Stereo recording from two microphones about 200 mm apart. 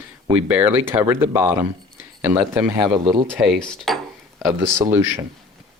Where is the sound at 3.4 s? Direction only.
Centre (ahead or behind).